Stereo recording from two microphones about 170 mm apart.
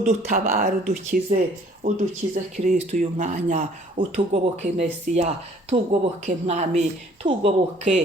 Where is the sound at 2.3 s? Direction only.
45° right (ahead or behind).